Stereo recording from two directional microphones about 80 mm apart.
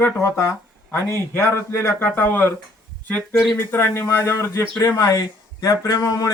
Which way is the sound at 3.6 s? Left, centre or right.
Left.